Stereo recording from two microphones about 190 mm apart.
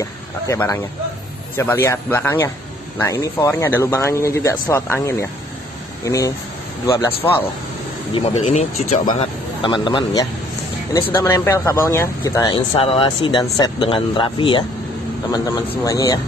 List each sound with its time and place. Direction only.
0.5 s speech: 15° left (ahead or behind)
8.1 s speech: 35° left (ahead or behind)
9.1 s speech: 25° left (ahead or behind)
10.9 s speech: 10° left (ahead or behind)